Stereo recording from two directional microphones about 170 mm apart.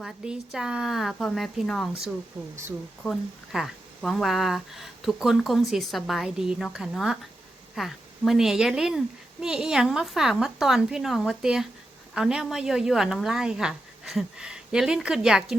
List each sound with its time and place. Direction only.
0.0 s speech: 5° right (ahead or behind)
3.0 s speech: centre (ahead or behind)